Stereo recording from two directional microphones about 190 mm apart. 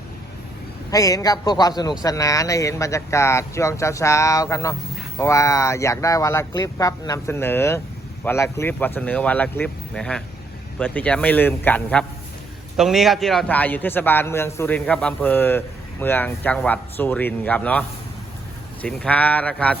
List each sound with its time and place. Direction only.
0.9 s a man's voice: 20° left (ahead or behind)